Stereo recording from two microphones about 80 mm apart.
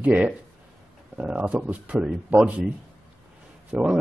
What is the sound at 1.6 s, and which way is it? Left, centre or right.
Speech, centre.